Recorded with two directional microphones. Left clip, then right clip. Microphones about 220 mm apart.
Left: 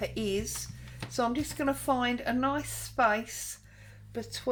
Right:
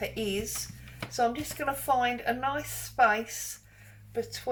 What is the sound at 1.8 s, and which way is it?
A woman's voice, 45° left (ahead or behind).